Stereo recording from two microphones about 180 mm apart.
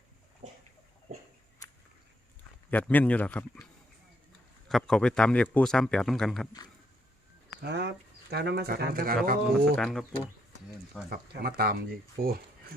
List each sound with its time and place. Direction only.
0.4 s chicken: 45° right (ahead or behind)
2.6 s a man's voice: 10° left (ahead or behind)
4.7 s speech: 5° left (ahead or behind)
7.6 s speech: 70° right (ahead or behind); by 9.7 s 55° right (ahead or behind)
9.7 s speech: 5° left (ahead or behind)
11.1 s speech: 60° right (ahead or behind)